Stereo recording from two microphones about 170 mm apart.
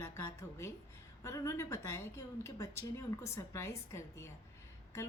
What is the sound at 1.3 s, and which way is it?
A woman's voice, 20° left (ahead or behind).